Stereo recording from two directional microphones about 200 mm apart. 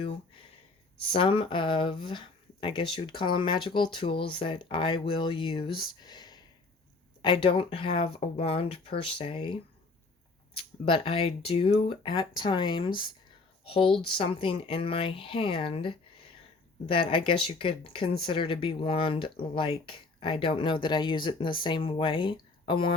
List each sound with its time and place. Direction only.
1.0 s speech: 25° left (ahead or behind)